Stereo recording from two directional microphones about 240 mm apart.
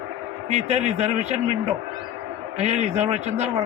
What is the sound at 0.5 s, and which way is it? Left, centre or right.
Speech, right.